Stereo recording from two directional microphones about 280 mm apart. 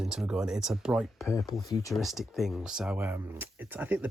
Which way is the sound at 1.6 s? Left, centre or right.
Centre.